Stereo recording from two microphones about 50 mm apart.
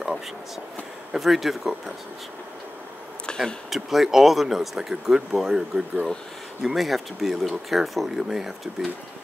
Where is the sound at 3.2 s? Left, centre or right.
Centre.